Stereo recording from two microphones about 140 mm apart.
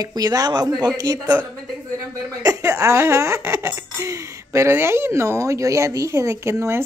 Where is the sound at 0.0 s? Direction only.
30° right (ahead or behind).